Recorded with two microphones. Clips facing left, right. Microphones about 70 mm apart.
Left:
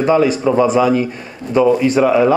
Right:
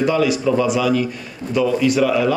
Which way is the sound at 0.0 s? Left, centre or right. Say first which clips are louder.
Left 4 dB; left.